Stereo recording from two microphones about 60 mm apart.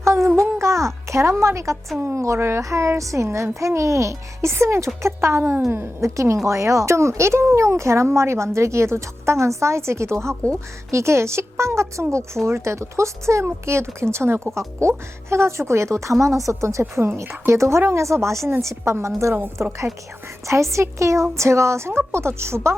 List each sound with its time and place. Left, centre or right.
0.0 s a sound: right
0.3 s music: right
2.0 s a child's voice: right
5.4 s a woman's voice: right
6.0 s a child's voice: right
19.6 s a woman's voice: right
20.5 s speech: right